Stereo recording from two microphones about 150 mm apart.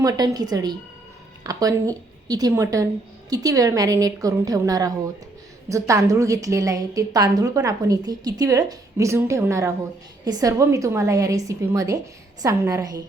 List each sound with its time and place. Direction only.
0.0 s a woman's voice: 25° right (ahead or behind)